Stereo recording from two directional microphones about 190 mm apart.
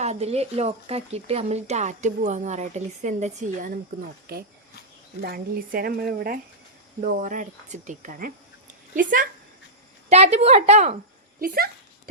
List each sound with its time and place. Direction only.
0.0 s speech: 35° right (ahead or behind)
5.2 s speech: 50° right (ahead or behind)
10.1 s speech: 35° right (ahead or behind)
11.3 s speech: 50° right (ahead or behind)